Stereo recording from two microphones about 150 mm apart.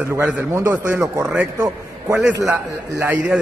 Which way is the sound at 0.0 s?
15° right (ahead or behind).